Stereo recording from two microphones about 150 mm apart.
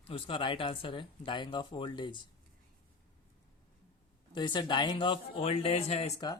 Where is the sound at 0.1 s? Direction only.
35° left (ahead or behind).